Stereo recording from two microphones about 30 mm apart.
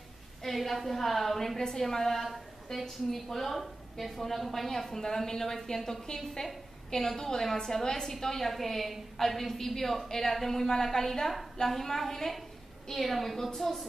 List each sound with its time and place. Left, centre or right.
0.4 s a woman's voice: centre